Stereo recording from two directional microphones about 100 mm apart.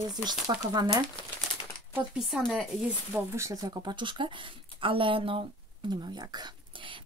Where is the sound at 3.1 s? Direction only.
25° right (ahead or behind).